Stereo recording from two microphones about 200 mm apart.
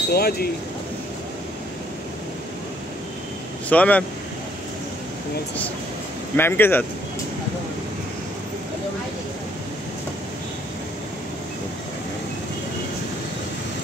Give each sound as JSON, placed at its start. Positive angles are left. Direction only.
{"t": 0.1, "sound": "speech", "side_deg": 50}
{"t": 3.6, "sound": "speech", "side_deg": 5}
{"t": 6.3, "sound": "speech", "side_deg": 10}